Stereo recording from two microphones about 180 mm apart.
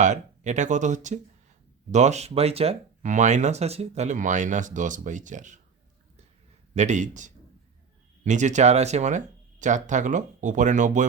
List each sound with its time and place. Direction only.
0.0 s speech: 40° right (ahead or behind)
6.7 s speech: 40° right (ahead or behind)